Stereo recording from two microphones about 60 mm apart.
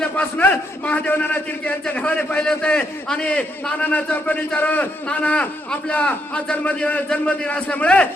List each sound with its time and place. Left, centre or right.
0.0 s a man's voice: left